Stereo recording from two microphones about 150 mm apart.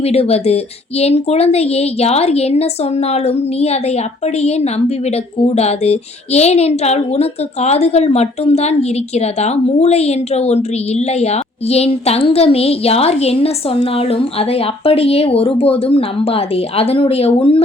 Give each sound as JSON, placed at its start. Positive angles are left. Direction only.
{"t": 0.0, "sound": "a woman's voice", "side_deg": 40}